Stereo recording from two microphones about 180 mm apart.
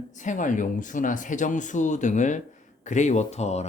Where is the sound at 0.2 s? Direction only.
45° left (ahead or behind).